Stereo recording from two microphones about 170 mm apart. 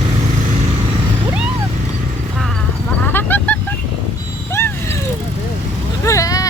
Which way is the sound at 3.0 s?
10° left (ahead or behind).